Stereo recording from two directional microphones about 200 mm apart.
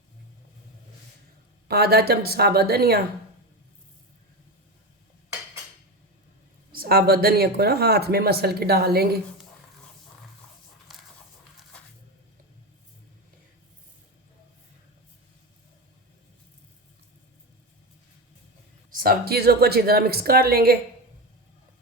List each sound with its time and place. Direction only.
1.6 s speech: 50° right (ahead or behind)
6.7 s speech: 50° right (ahead or behind)
18.9 s speech: 45° right (ahead or behind)